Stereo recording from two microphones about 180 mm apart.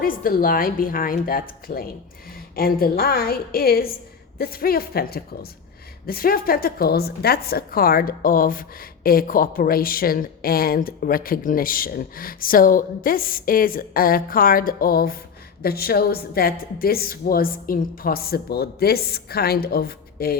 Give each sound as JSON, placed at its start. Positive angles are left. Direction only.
{"t": 0.0, "sound": "a woman's voice", "side_deg": 50}